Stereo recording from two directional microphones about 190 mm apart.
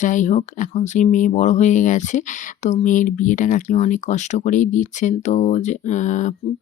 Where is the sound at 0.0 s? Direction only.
40° left (ahead or behind).